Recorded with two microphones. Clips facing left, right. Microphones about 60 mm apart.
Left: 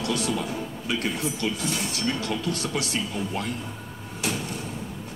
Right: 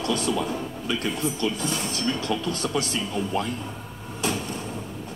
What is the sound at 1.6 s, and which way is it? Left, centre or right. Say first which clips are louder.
A woman's voice: right 1 dB; right.